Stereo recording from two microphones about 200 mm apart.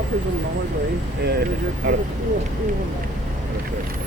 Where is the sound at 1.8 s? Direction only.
60° right (ahead or behind).